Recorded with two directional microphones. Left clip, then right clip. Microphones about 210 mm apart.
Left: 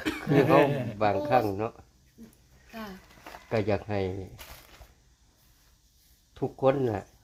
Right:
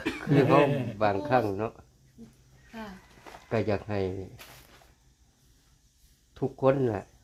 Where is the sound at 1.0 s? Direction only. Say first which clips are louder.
Left 1 dB; 15° right (ahead or behind).